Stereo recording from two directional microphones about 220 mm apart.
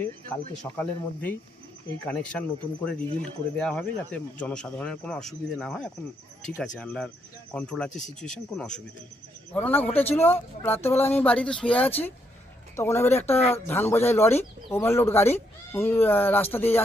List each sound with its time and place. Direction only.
0.0 s speech: 10° left (ahead or behind)
7.9 s speech: 35° left (ahead or behind)
8.2 s speech: 5° left (ahead or behind)